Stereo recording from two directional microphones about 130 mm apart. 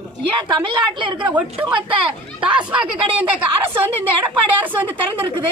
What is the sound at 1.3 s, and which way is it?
A woman's voice, 10° right (ahead or behind).